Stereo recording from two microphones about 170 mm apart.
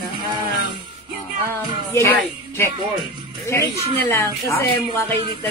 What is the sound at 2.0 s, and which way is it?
Speech, 15° left (ahead or behind).